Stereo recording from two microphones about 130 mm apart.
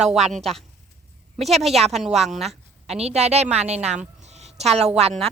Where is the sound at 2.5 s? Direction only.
55° right (ahead or behind).